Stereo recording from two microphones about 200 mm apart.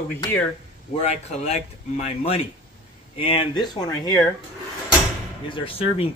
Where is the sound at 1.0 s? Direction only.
30° left (ahead or behind).